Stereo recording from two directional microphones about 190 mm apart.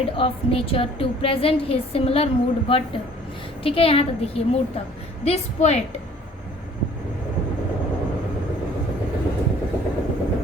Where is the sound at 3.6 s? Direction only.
30° left (ahead or behind).